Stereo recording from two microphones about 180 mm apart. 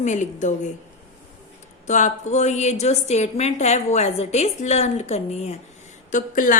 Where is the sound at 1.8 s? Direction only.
40° left (ahead or behind).